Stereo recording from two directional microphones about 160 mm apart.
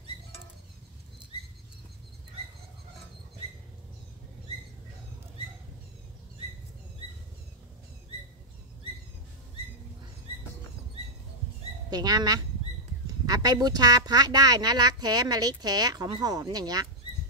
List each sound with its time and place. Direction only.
11.9 s speech: 25° right (ahead or behind)